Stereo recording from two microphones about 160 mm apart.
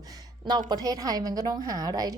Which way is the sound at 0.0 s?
25° right (ahead or behind).